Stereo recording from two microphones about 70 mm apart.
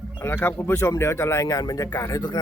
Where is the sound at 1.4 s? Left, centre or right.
Left.